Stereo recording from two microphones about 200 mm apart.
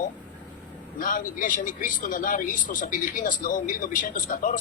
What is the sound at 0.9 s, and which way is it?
Speech, 40° left (ahead or behind).